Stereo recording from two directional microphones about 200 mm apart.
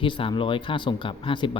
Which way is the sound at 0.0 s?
25° left (ahead or behind).